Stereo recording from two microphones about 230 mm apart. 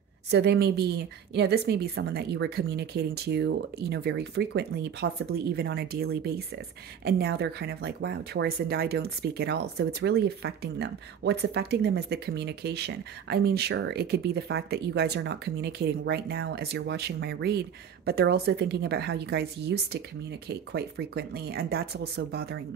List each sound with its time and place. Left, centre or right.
0.3 s speech: right